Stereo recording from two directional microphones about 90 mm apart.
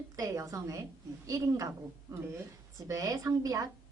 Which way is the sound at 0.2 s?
40° right (ahead or behind).